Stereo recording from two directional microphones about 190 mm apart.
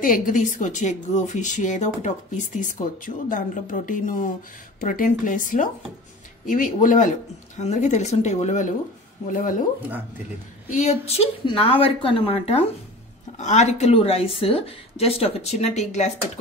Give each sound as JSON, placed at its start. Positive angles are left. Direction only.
{"t": 0.0, "sound": "a woman's voice", "side_deg": 45}
{"t": 9.8, "sound": "speech", "side_deg": -10}
{"t": 10.7, "sound": "speech", "side_deg": 35}